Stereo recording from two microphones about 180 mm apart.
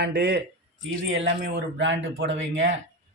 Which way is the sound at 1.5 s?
80° right.